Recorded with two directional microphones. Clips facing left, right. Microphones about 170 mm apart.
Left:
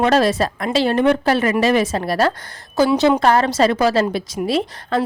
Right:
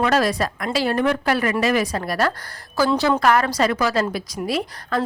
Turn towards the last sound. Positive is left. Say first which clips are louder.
# left 4 dB
turn(degrees=25)  # may be behind; listen again after turning